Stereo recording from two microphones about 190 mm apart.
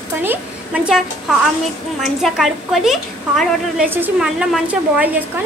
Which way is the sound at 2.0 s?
Centre (ahead or behind).